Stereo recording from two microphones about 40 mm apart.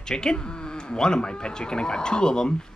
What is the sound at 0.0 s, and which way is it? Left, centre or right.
Speech, centre.